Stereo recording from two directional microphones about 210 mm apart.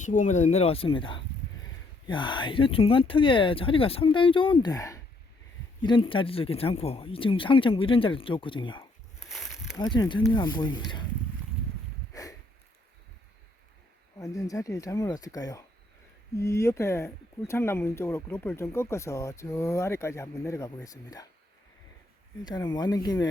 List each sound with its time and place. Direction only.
0.0 s speech: 35° left (ahead or behind)
9.3 s a sound: centre (ahead or behind)
9.7 s speech: 15° left (ahead or behind)
12.1 s a sound: 15° left (ahead or behind)
14.2 s speech: 15° left (ahead or behind)
22.4 s speech: 20° left (ahead or behind)